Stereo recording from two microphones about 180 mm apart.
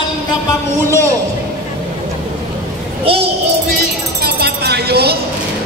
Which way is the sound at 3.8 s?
60° right (ahead or behind).